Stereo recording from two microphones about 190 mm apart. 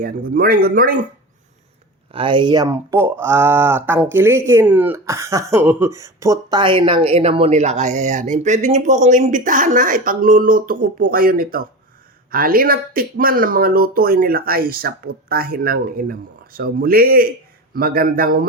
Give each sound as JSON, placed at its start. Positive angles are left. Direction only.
{"t": 0.0, "sound": "speech", "side_deg": -50}
{"t": 2.1, "sound": "speech", "side_deg": -25}